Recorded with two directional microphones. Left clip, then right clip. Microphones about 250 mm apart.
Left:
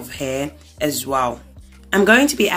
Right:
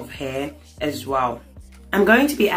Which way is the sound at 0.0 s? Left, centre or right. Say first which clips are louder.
Left 3 dB; left.